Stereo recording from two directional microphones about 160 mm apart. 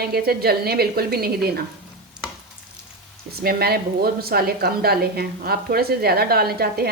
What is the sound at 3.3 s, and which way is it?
A woman's voice, 75° right (ahead or behind).